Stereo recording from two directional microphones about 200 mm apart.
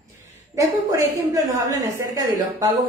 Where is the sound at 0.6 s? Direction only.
15° right (ahead or behind).